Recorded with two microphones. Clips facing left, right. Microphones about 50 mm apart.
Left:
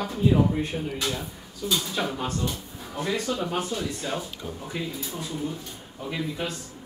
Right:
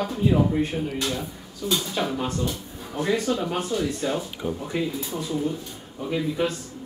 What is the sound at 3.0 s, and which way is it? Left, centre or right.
Speech, right.